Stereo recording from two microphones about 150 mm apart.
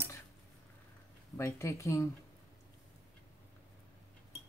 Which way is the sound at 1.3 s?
20° left (ahead or behind).